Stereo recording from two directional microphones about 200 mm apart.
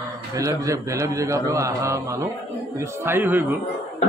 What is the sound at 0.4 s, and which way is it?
Speech, 15° right (ahead or behind).